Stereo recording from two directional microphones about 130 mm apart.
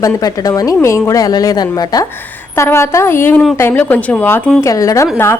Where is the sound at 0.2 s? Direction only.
30° left (ahead or behind); by 4.5 s 15° left (ahead or behind).